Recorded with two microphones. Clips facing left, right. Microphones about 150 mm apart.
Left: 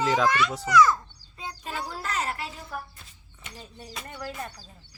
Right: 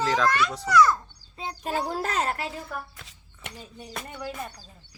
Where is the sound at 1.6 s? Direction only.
45° right (ahead or behind).